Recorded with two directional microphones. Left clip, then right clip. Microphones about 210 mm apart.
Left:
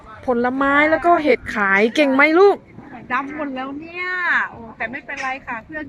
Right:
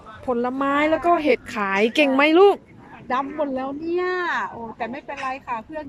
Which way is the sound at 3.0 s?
25° right (ahead or behind).